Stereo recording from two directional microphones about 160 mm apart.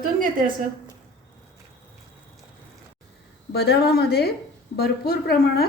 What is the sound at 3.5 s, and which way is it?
A woman's voice, 85° left.